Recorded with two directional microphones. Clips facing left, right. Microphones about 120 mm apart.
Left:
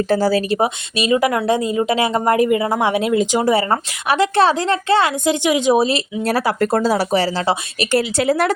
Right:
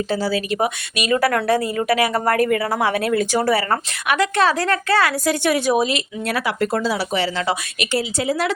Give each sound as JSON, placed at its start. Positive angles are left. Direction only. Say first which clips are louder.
{"t": 0.1, "sound": "speech", "louder": "left 5 dB", "side_deg": 45}
{"t": 1.1, "sound": "a woman's voice", "louder": "left 1 dB", "side_deg": 15}
{"t": 5.7, "sound": "speech", "louder": "left 3 dB", "side_deg": 30}
{"t": 7.9, "sound": "speech", "louder": "left 5 dB", "side_deg": 65}